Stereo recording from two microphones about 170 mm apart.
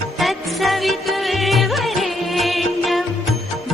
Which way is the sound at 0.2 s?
Centre (ahead or behind).